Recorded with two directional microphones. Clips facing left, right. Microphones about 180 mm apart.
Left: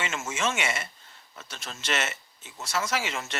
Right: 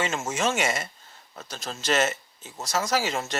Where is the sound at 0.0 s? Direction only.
35° right (ahead or behind).